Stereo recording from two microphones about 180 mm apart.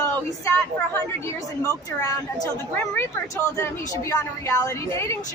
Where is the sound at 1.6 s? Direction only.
20° left (ahead or behind).